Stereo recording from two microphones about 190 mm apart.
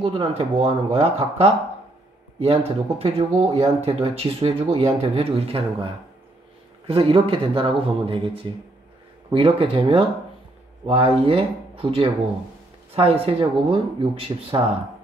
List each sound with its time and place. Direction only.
0.0 s speech: 30° right (ahead or behind)
6.9 s speech: 30° right (ahead or behind)
9.3 s speech: 30° right (ahead or behind)